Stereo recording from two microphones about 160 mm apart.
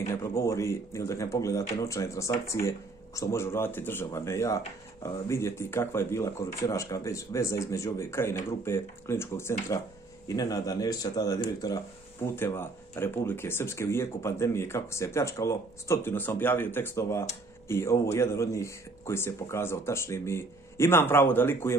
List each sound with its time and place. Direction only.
0.1 s speech: 15° left (ahead or behind)